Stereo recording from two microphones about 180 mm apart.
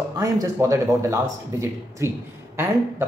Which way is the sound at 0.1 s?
20° right (ahead or behind).